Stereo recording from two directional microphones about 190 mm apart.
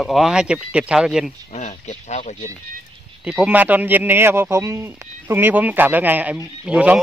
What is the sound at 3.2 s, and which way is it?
Speech, 5° right (ahead or behind).